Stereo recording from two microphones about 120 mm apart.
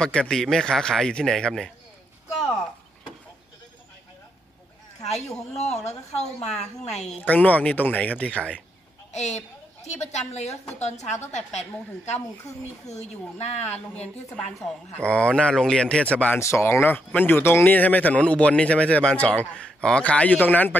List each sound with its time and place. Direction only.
0.0 s a man's voice: 5° left (ahead or behind)
5.9 s a woman's voice: 65° left (ahead or behind)
7.1 s speech: 10° left (ahead or behind)
9.1 s a woman's voice: 65° left (ahead or behind)
14.3 s speech: 5° left (ahead or behind)
16.3 s speech: 20° left (ahead or behind)